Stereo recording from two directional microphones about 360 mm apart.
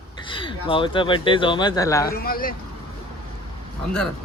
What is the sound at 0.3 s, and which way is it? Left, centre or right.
Speech, centre.